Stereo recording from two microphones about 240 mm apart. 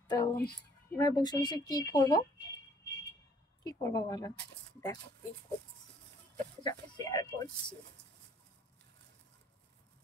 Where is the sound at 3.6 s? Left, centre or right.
Centre.